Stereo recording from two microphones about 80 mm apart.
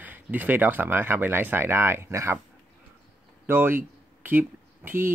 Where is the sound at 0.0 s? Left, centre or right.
Right.